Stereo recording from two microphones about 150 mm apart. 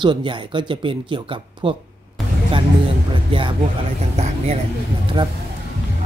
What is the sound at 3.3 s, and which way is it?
Speech, 35° right (ahead or behind).